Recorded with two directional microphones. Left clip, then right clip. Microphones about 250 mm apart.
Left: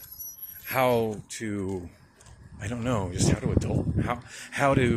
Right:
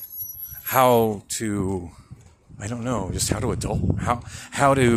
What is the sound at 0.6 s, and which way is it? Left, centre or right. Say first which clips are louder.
Speech: right 7 dB; right.